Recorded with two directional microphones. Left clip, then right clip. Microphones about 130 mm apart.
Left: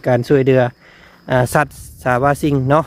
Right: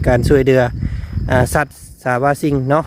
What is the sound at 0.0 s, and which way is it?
Speech, 15° left (ahead or behind).